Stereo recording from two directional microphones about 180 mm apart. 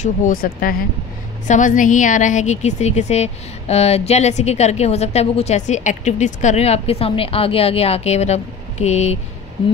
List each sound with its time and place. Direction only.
0.0 s a woman's voice: 50° left (ahead or behind)